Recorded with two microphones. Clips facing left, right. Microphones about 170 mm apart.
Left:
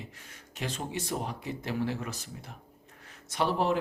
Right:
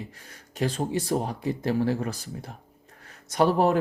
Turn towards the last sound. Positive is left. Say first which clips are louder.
# right 7 dB
turn(degrees=-45)  # may be behind; listen again after turning